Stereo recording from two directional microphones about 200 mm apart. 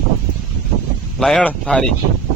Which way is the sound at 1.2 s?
5° left (ahead or behind).